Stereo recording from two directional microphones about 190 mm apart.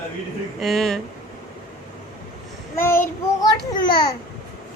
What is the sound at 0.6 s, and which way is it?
Speech, centre (ahead or behind).